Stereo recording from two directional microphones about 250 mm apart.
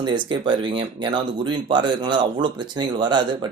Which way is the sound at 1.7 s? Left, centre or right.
Centre.